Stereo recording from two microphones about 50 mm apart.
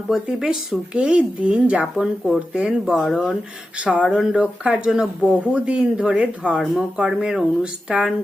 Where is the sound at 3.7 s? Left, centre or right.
Right.